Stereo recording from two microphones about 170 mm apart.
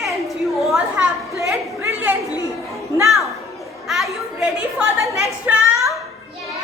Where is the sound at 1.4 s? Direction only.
15° right (ahead or behind).